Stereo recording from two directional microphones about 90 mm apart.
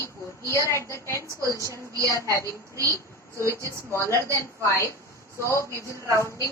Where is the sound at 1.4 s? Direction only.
35° right (ahead or behind).